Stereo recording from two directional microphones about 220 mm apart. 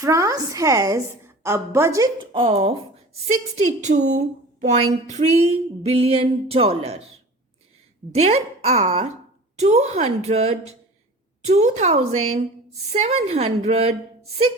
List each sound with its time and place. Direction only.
0.0 s a woman's voice: 15° right (ahead or behind)
8.1 s speech: 30° right (ahead or behind)